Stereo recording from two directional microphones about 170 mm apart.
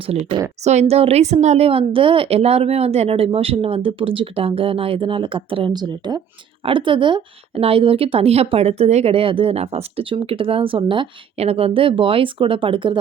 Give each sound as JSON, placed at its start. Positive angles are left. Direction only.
{"t": 0.6, "sound": "speech", "side_deg": -40}